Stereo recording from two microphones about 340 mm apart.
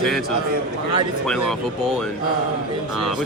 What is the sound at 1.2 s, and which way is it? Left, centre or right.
Speech, centre.